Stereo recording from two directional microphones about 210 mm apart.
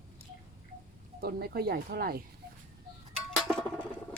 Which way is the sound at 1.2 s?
45° right (ahead or behind).